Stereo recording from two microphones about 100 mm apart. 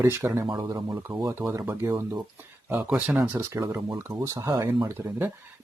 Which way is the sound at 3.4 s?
30° right (ahead or behind).